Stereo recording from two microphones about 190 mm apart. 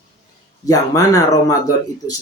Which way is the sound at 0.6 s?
20° left (ahead or behind).